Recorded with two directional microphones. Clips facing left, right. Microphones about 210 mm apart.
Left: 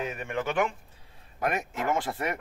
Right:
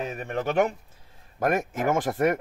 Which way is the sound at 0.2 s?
40° right (ahead or behind).